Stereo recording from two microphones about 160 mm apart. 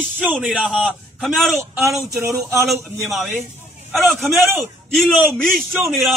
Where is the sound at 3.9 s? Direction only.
Centre (ahead or behind).